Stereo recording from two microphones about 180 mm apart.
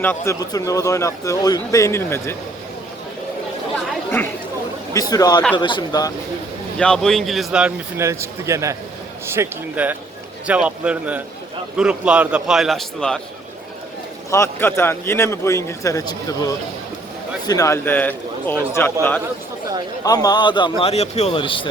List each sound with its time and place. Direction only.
0.0 s a man's voice: 15° left (ahead or behind)
4.9 s a man's voice: 20° left (ahead or behind)
6.7 s a man's voice: 5° left (ahead or behind)
14.3 s a man's voice: 15° left (ahead or behind)
20.1 s a man's voice: 20° left (ahead or behind)